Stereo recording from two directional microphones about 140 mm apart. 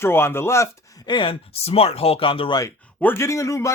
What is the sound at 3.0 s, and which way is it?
Speech, 15° left (ahead or behind).